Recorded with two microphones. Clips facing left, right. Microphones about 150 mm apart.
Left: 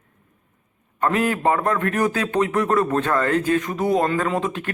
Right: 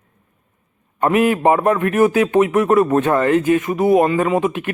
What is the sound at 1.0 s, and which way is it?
A man's voice, 15° right (ahead or behind).